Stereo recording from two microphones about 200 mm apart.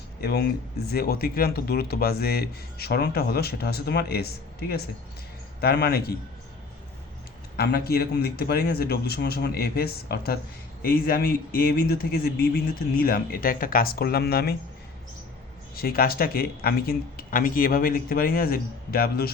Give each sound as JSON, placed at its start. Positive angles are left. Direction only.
{"t": 0.2, "sound": "speech", "side_deg": 55}
{"t": 5.5, "sound": "speech", "side_deg": 55}
{"t": 7.5, "sound": "speech", "side_deg": 50}
{"t": 15.7, "sound": "speech", "side_deg": 50}